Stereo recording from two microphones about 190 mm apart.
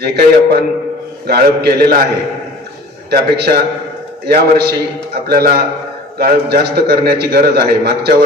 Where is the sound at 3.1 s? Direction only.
55° right (ahead or behind).